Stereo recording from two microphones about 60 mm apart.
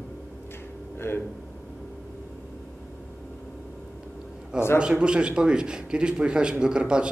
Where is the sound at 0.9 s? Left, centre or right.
Left.